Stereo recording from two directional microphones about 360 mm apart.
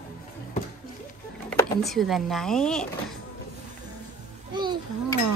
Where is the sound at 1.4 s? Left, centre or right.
Centre.